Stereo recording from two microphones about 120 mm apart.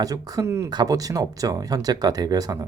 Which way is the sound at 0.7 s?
35° right (ahead or behind).